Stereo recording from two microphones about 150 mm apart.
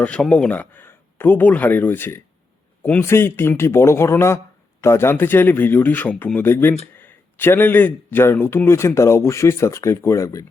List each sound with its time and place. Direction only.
0.0 s a man's voice: 10° left (ahead or behind)